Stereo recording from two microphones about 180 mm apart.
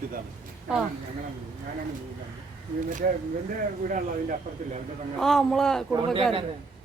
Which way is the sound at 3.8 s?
45° right (ahead or behind).